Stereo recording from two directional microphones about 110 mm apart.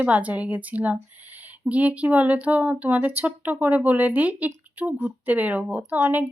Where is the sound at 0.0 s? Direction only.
15° right (ahead or behind).